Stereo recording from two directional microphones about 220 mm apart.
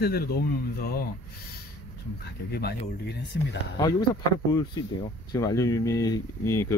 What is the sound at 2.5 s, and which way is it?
Speech, 45° left (ahead or behind).